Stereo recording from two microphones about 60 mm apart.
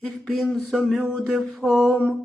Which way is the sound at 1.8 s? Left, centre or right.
Left.